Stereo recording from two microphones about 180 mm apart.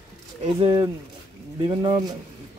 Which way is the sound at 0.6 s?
30° right (ahead or behind).